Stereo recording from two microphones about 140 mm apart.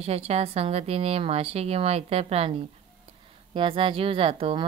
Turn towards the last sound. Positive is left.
turn(degrees=-40)  # may be behind; listen again after turning